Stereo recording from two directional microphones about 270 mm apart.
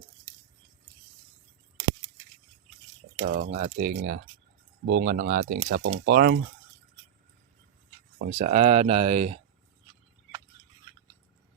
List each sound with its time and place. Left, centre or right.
3.3 s speech: right
8.2 s speech: right